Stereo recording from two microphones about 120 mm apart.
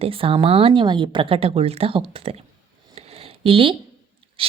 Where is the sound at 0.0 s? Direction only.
50° right (ahead or behind).